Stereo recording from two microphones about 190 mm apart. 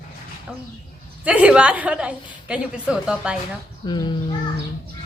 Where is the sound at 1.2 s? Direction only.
5° right (ahead or behind).